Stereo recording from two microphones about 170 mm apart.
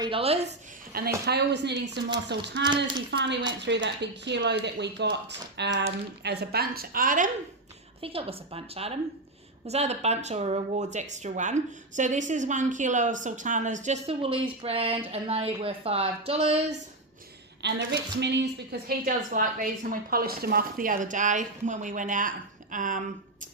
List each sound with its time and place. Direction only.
0.0 s speech: 35° right (ahead or behind)
1.2 s a woman's voice: 75° right (ahead or behind); by 7.3 s 55° right (ahead or behind)
8.0 s speech: 35° right (ahead or behind)
17.6 s a woman's voice: 90° right; by 23.0 s 50° right (ahead or behind)